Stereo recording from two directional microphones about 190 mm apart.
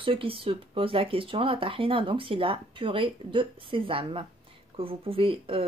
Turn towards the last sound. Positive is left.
turn(degrees=-30)  # may be behind; listen again after turning